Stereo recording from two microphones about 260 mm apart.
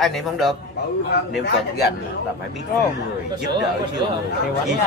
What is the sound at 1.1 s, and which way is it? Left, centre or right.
Speech, left.